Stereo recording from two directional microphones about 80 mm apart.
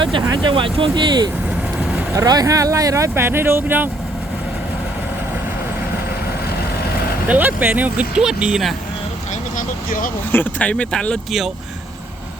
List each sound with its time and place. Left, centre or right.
0.0 s speech: right
1.8 s vehicle: centre
2.1 s speech: right
7.3 s speech: right
8.2 s speech: centre
10.3 s speech: left
11.3 s speech: centre